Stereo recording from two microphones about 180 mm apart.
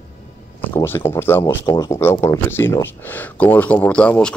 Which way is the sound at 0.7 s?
15° left (ahead or behind).